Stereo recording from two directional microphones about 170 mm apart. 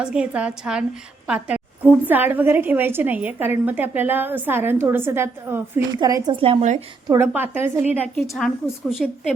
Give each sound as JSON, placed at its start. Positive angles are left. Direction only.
{"t": 0.0, "sound": "a woman's voice", "side_deg": -5}
{"t": 6.3, "sound": "a woman's voice", "side_deg": -35}
{"t": 7.1, "sound": "a woman's voice", "side_deg": -15}
{"t": 8.1, "sound": "a woman's voice", "side_deg": 5}